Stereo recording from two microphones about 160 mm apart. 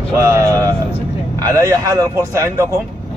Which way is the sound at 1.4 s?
20° right (ahead or behind).